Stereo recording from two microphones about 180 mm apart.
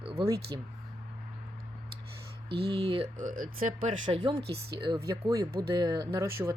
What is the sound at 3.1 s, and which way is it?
Speech, 45° right (ahead or behind).